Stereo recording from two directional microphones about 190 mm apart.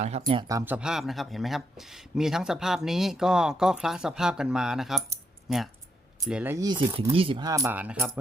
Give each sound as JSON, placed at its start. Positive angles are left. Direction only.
{"t": 0.0, "sound": "speech", "side_deg": -35}
{"t": 0.4, "sound": "speech", "side_deg": -15}